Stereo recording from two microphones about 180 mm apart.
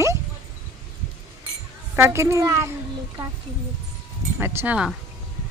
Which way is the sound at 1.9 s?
15° right (ahead or behind).